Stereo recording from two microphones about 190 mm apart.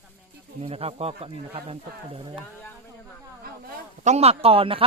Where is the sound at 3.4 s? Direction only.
50° right (ahead or behind).